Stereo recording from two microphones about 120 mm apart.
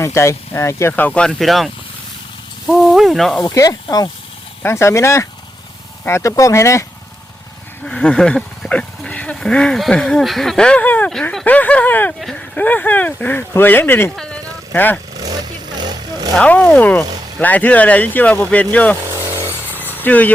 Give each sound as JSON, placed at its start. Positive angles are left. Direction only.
{"t": 0.0, "sound": "speech", "side_deg": 25}
{"t": 2.6, "sound": "sizzle", "side_deg": 0}
{"t": 3.4, "sound": "speech", "side_deg": 30}
{"t": 4.6, "sound": "speech", "side_deg": 25}
{"t": 7.9, "sound": "speech", "side_deg": 10}
{"t": 15.1, "sound": "vehicle", "side_deg": -30}
{"t": 16.3, "sound": "speech", "side_deg": 10}
{"t": 19.0, "sound": "a sound", "side_deg": -25}
{"t": 19.8, "sound": "a sound", "side_deg": 15}